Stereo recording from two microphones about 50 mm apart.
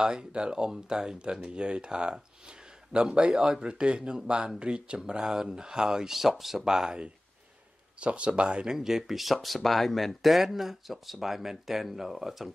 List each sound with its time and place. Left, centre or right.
0.0 s speech: centre
3.6 s speech: centre
8.0 s speech: right; by 12.4 s centre